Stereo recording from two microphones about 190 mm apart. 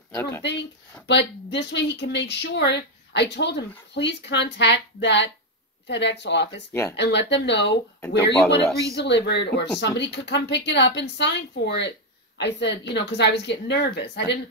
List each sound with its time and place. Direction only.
0.1 s speech: 15° left (ahead or behind)
1.0 s speech: 65° left (ahead or behind)
6.7 s speech: 15° left (ahead or behind)
7.0 s speech: 65° left (ahead or behind)
8.9 s speech: 65° left (ahead or behind)